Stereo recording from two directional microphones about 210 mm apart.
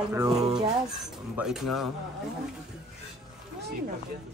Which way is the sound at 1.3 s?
Centre (ahead or behind).